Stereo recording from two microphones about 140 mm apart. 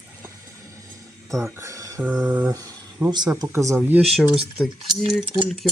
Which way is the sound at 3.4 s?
20° right (ahead or behind).